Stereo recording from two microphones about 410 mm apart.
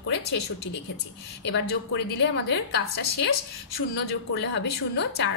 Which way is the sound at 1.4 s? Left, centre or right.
Left.